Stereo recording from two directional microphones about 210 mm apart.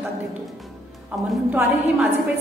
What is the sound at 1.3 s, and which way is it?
Speech, centre (ahead or behind).